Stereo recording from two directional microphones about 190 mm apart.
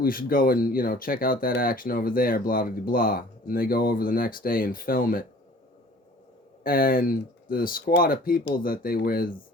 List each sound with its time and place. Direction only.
0.0 s speech: 50° left (ahead or behind)
6.6 s speech: 50° left (ahead or behind)